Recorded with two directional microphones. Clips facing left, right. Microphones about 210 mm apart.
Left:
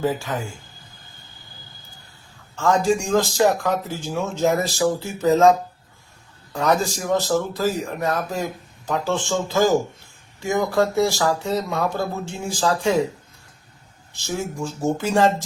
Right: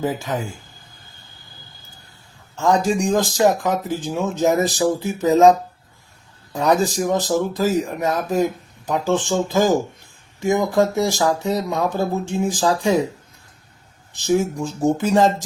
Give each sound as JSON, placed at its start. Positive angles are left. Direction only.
{"t": 0.0, "sound": "speech", "side_deg": -15}
{"t": 2.6, "sound": "speech", "side_deg": -15}
{"t": 14.1, "sound": "speech", "side_deg": -15}